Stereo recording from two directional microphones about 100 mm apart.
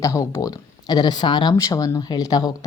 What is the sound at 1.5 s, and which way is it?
Speech, 35° left (ahead or behind).